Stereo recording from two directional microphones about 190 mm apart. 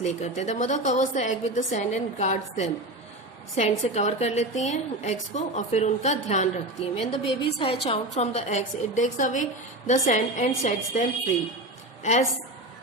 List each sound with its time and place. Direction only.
0.0 s a woman's voice: 35° left (ahead or behind)